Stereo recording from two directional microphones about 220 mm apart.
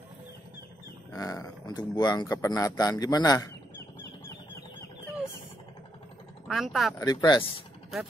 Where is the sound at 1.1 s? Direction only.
15° left (ahead or behind).